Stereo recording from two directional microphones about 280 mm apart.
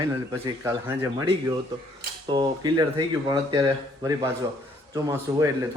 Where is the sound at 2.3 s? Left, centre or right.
Centre.